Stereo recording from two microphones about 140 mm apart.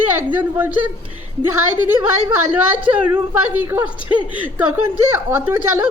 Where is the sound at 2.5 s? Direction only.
10° right (ahead or behind).